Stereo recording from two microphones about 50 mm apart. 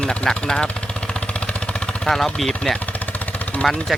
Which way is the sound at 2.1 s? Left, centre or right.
Centre.